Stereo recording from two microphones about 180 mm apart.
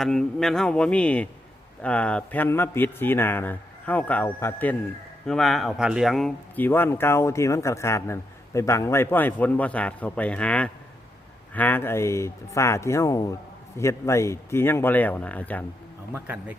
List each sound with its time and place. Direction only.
0.0 s a man's voice: 5° left (ahead or behind)
16.1 s speech: 10° right (ahead or behind)